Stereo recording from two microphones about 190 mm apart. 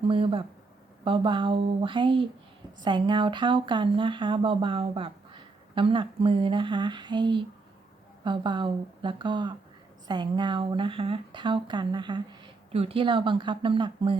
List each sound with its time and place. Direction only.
0.1 s speech: 30° right (ahead or behind)